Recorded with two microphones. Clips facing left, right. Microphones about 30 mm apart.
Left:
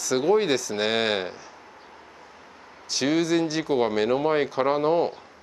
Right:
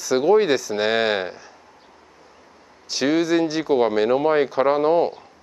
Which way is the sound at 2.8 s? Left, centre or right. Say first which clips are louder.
Right 3 dB; centre.